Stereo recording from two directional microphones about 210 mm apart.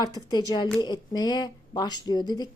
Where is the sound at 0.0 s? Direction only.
20° left (ahead or behind).